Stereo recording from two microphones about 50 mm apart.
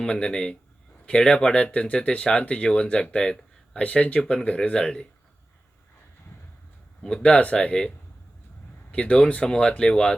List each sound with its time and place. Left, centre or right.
0.0 s speech: centre
7.0 s speech: left